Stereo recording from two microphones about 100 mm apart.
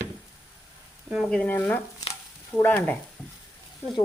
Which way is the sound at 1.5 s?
20° left (ahead or behind).